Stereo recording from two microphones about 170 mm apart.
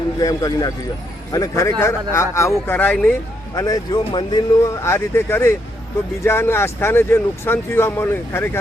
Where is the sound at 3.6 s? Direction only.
20° left (ahead or behind).